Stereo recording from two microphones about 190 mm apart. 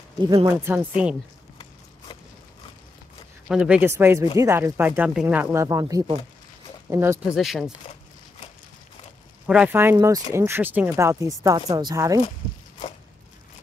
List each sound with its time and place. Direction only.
0.3 s speech: 15° right (ahead or behind)
3.4 s speech: 5° right (ahead or behind)
7.3 s speech: centre (ahead or behind)
9.5 s speech: 10° right (ahead or behind)